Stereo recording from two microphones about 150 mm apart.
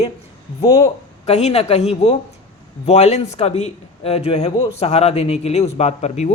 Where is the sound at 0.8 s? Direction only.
50° left (ahead or behind).